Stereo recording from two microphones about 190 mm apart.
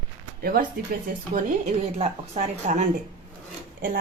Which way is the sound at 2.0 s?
35° right (ahead or behind).